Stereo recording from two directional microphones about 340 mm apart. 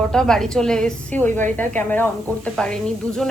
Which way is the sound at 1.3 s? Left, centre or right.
Right.